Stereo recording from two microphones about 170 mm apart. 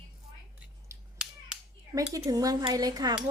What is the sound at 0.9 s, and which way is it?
Finger snapping, 20° right (ahead or behind).